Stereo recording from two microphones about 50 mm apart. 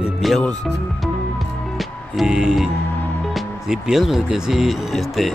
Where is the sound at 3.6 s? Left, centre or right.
Centre.